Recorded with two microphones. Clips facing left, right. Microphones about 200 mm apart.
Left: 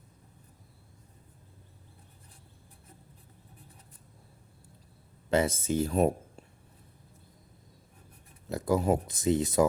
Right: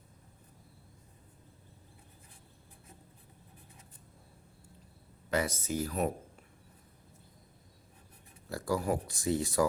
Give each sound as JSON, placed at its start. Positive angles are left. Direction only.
{"t": 5.3, "sound": "speech", "side_deg": 25}
{"t": 8.4, "sound": "speech", "side_deg": 20}